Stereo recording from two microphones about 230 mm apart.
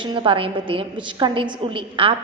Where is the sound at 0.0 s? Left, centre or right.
Right.